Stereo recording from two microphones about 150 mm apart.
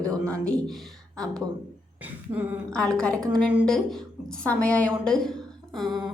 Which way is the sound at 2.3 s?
10° right (ahead or behind).